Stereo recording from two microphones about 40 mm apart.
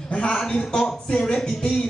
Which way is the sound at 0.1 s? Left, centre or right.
Left.